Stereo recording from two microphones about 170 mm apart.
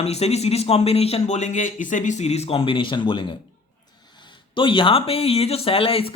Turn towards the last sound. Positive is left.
turn(degrees=35)  # may be behind; listen again after turning